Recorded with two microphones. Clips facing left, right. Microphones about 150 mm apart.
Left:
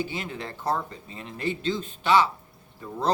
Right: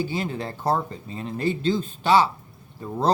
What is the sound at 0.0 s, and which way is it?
Speech, 35° right (ahead or behind).